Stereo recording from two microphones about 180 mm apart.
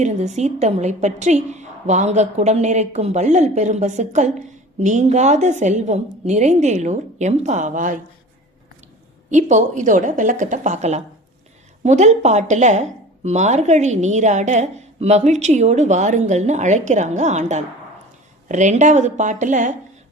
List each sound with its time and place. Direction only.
0.0 s a woman's voice: 40° right (ahead or behind)
9.3 s a woman's voice: 40° right (ahead or behind)